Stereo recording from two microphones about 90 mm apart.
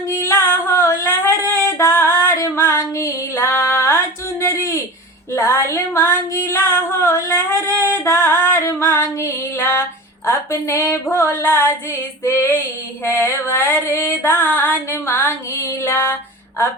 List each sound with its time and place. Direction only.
0.1 s music: 30° left (ahead or behind)
1.2 s female singing: 30° left (ahead or behind)
5.3 s a sound: 25° left (ahead or behind)
7.9 s female singing: 30° left (ahead or behind)